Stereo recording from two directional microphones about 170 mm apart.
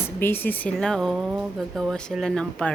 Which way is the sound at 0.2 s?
10° left (ahead or behind).